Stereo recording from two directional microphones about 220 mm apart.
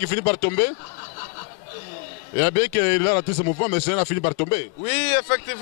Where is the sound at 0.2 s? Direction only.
10° left (ahead or behind).